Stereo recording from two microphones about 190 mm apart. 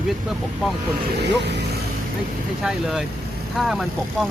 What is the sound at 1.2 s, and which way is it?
Speech, 65° right (ahead or behind).